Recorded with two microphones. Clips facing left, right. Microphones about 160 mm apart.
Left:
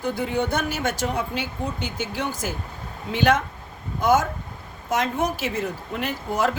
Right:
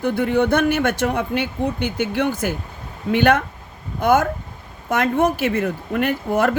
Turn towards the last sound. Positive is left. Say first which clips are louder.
# right 5 dB
turn(degrees=-60)  # may be behind; listen again after turning